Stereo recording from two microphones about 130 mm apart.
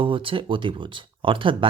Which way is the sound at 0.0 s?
40° right (ahead or behind).